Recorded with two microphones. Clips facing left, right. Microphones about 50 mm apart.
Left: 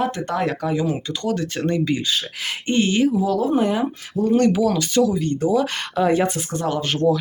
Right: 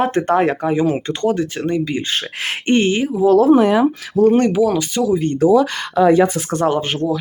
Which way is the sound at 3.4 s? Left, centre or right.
Right.